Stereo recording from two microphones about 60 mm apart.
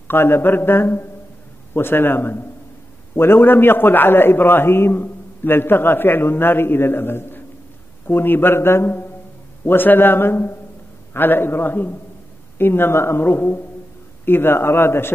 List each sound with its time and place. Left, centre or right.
0.1 s a man's voice: left